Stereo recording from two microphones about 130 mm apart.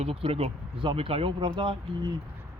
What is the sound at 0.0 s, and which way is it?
Speech, 45° right (ahead or behind).